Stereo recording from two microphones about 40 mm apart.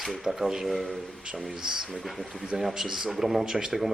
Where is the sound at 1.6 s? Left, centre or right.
Centre.